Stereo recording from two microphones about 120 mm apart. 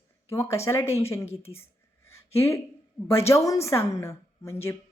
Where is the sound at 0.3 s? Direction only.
25° left (ahead or behind).